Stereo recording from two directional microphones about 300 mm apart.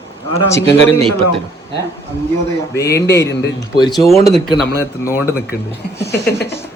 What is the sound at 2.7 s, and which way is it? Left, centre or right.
Speech, centre.